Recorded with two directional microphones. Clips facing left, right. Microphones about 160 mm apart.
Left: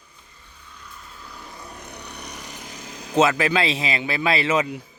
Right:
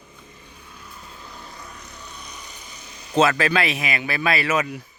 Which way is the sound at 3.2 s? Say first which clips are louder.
Even; 20° left (ahead or behind).